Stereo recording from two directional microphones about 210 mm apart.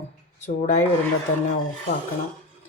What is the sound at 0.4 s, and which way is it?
Speech, 35° left (ahead or behind).